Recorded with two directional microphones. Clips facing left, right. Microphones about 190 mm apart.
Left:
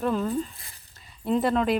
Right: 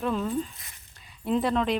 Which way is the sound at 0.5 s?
30° left (ahead or behind).